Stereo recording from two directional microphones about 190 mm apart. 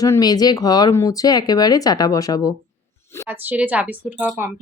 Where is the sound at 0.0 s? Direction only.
20° left (ahead or behind).